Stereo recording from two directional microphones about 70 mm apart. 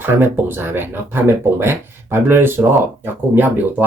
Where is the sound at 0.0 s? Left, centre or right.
Right.